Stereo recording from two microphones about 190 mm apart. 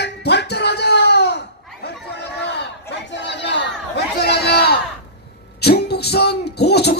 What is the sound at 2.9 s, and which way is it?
Chatter, 65° left (ahead or behind).